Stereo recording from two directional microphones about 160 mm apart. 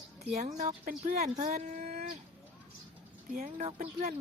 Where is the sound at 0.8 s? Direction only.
55° right (ahead or behind).